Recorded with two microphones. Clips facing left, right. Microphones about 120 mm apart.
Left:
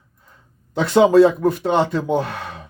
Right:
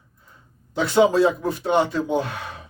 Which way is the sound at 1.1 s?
60° left (ahead or behind).